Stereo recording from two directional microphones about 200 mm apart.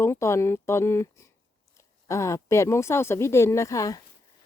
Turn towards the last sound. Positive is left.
turn(degrees=15)  # may be behind; listen again after turning